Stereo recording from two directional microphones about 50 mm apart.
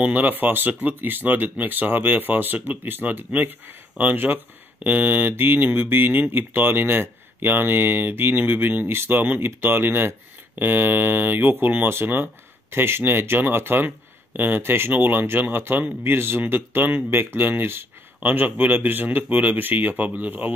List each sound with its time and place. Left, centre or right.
0.0 s speech: right
16.0 s speech: right